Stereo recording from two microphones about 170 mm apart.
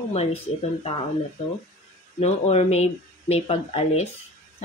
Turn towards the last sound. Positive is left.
turn(degrees=40)  # may be behind; listen again after turning